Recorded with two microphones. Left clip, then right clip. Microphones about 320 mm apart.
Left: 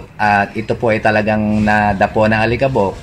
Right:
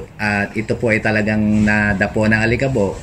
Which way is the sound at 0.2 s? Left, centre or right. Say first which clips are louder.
Left 6 dB; left.